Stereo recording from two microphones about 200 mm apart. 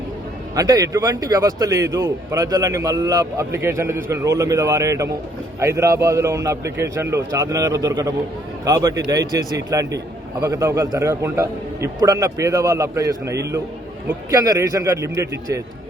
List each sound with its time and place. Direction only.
0.5 s a man's voice: 15° right (ahead or behind)